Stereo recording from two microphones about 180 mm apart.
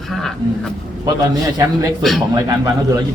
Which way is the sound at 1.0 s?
20° right (ahead or behind).